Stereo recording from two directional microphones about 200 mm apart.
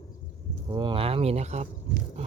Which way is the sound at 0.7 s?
20° right (ahead or behind).